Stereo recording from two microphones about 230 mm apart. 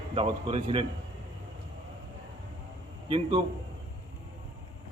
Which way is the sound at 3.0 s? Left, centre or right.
Right.